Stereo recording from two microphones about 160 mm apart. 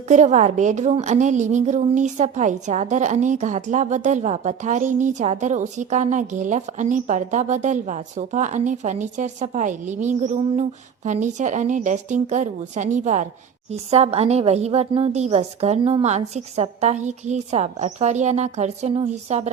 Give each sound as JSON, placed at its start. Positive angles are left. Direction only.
{"t": 0.1, "sound": "a woman's voice", "side_deg": -45}